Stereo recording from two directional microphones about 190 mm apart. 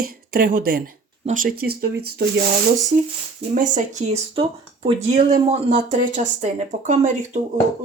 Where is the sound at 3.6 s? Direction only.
40° right (ahead or behind).